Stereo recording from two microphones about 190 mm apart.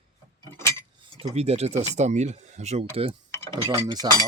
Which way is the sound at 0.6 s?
15° left (ahead or behind).